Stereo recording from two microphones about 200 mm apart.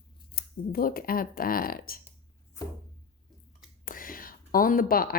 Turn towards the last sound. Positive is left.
turn(degrees=45)  # may be behind; listen again after turning